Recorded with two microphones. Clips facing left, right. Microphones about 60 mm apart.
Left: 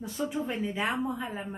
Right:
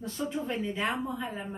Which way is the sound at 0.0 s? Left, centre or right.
Centre.